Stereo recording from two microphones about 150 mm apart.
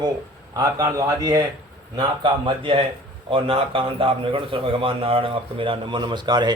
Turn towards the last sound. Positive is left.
turn(degrees=-30)  # may be behind; listen again after turning